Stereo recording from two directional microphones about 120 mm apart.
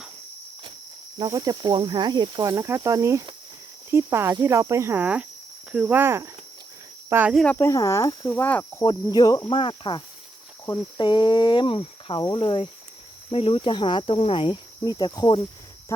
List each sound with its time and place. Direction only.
1.2 s speech: 30° right (ahead or behind); by 7.3 s 15° right (ahead or behind)
7.4 s speech: 20° left (ahead or behind)
8.3 s speech: 15° left (ahead or behind)
8.8 s speech: 30° left (ahead or behind)
9.5 s speech: 45° left (ahead or behind)
14.8 s speech: 35° left (ahead or behind)